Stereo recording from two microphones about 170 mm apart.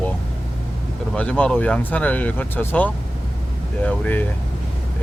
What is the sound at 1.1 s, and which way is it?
Speech, 5° left (ahead or behind).